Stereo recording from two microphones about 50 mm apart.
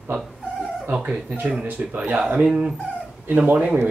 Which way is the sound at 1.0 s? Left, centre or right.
Right.